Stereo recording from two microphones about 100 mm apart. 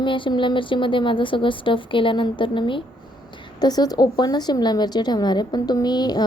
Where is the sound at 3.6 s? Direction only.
40° left (ahead or behind).